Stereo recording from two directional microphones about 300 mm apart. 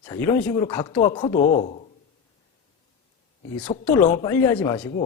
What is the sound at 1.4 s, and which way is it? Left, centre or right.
Speech, left.